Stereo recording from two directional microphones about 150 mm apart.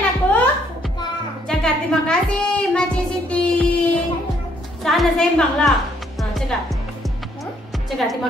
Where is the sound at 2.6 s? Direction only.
5° left (ahead or behind).